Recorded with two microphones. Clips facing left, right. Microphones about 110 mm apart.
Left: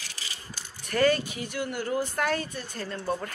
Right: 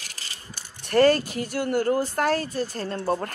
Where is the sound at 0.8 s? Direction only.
40° right (ahead or behind).